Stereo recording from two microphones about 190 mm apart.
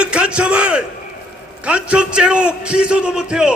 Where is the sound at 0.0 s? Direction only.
5° right (ahead or behind).